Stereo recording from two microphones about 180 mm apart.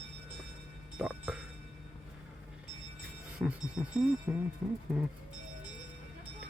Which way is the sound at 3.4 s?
5° right (ahead or behind).